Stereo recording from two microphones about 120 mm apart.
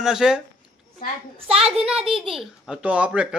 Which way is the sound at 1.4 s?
55° right (ahead or behind).